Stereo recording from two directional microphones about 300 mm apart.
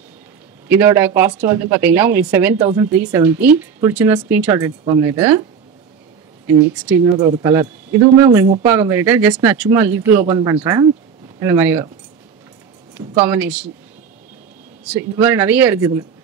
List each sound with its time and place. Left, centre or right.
0.7 s speech: centre
6.4 s speech: centre
13.1 s speech: centre
15.1 s speech: centre